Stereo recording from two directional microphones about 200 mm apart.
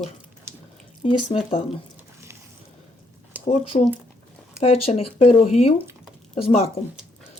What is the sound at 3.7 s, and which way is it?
Speech, 35° left (ahead or behind).